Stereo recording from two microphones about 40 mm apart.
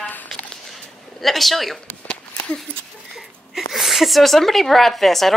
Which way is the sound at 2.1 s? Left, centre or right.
Left.